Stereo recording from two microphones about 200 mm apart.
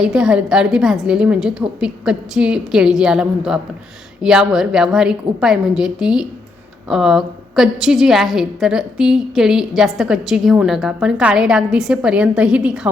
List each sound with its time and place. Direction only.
0.0 s a woman's voice: 5° right (ahead or behind)